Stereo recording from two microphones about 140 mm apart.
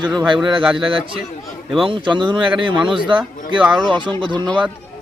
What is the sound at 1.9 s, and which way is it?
Speech, 35° right (ahead or behind).